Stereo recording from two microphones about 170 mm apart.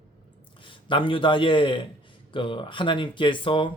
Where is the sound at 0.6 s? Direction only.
30° left (ahead or behind).